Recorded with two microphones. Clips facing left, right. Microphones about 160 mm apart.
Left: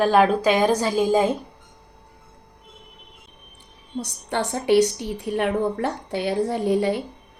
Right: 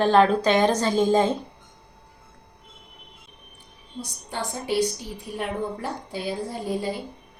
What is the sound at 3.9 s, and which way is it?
A woman's voice, 70° left (ahead or behind).